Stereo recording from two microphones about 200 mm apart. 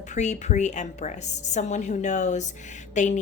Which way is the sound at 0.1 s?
35° left (ahead or behind).